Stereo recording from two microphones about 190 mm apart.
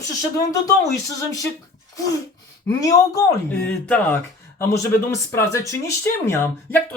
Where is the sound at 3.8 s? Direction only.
5° left (ahead or behind).